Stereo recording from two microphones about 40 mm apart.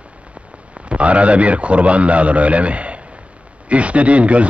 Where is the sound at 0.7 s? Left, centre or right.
Right.